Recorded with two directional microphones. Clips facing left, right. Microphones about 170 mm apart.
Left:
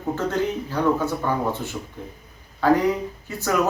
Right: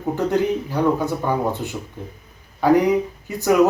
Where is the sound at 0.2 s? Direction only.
15° right (ahead or behind).